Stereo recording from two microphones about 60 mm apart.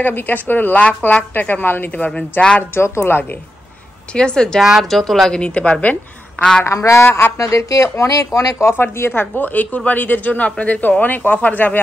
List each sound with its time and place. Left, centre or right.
0.0 s speech: left
4.1 s speech: centre
4.6 s speech: centre
5.3 s speech: centre
6.6 s a woman's voice: left
8.6 s speech: left
9.4 s speech: left